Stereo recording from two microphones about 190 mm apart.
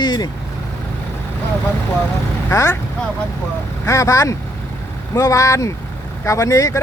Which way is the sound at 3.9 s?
15° left (ahead or behind).